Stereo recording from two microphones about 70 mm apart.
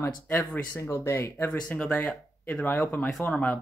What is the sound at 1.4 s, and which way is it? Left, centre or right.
Speech, centre.